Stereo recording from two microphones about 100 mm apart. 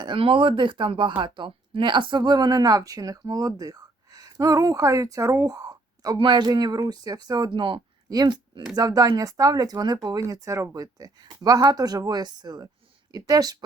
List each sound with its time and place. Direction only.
0.0 s speech: 60° right (ahead or behind); by 6.1 s 35° right (ahead or behind)
6.1 s speech: 50° right (ahead or behind)